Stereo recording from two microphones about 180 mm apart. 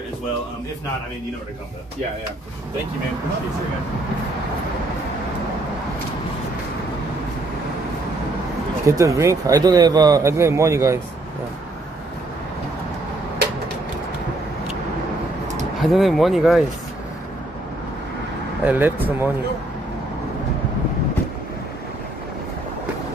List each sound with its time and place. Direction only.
8.8 s speech: 15° right (ahead or behind)
15.8 s speech: centre (ahead or behind)
18.6 s speech: 10° right (ahead or behind)